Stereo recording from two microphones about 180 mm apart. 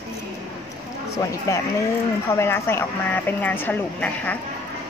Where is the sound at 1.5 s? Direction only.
15° left (ahead or behind).